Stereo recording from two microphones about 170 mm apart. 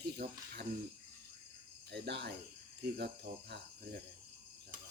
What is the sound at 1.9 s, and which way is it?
Speech, 75° right (ahead or behind).